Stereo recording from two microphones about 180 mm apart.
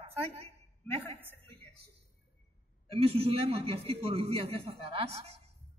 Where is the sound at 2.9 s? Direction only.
30° right (ahead or behind).